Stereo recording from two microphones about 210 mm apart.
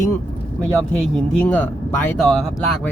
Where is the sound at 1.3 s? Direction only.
5° left (ahead or behind).